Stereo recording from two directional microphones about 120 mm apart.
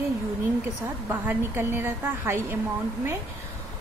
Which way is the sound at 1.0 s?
20° right (ahead or behind).